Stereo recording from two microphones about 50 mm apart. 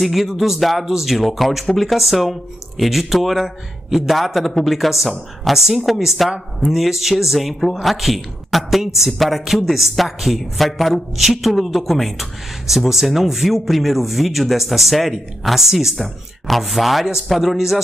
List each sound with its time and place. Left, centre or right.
0.0 s a woman's voice: centre